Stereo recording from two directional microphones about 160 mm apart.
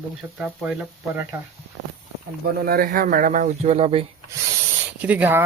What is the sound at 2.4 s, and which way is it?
Speech, 70° right (ahead or behind).